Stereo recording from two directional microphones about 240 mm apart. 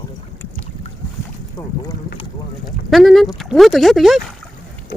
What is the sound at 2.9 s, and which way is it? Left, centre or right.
Speech, centre.